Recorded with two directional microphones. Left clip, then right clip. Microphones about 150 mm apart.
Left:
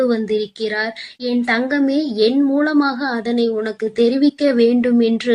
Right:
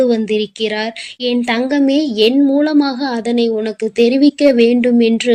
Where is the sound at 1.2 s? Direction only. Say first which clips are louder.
Right 2 dB; 50° right (ahead or behind).